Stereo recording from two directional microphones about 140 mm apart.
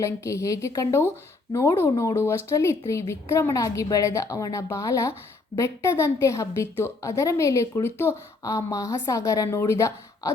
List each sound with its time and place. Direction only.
0.0 s a woman's voice: 20° left (ahead or behind)